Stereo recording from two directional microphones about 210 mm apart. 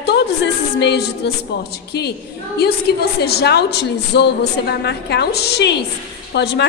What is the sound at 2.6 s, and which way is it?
A woman's voice, 50° left (ahead or behind).